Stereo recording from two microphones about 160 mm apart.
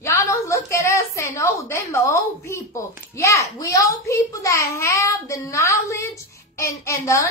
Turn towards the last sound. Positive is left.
turn(degrees=20)  # may be behind; listen again after turning